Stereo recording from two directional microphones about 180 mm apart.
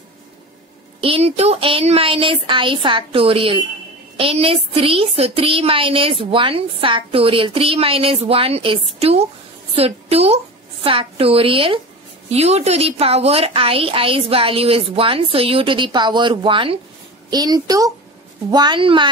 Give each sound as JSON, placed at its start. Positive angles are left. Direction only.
{"t": 1.0, "sound": "a woman's voice", "side_deg": -35}